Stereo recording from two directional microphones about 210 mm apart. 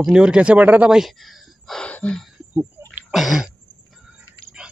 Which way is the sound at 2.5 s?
10° right (ahead or behind).